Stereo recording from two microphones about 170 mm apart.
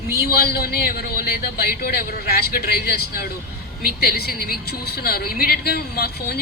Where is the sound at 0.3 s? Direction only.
65° left (ahead or behind).